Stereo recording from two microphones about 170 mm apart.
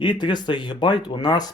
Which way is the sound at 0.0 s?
25° left (ahead or behind).